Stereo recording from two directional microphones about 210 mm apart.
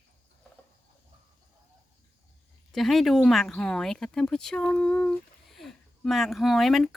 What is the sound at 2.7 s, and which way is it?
Speech, centre (ahead or behind).